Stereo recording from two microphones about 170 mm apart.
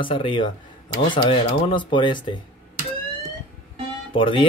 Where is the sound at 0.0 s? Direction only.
30° left (ahead or behind).